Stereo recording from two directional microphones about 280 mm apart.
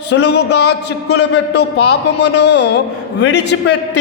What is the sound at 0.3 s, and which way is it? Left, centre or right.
A man's voice, left.